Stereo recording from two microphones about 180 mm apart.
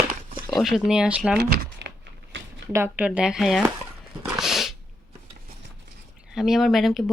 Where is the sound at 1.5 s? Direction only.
65° right (ahead or behind).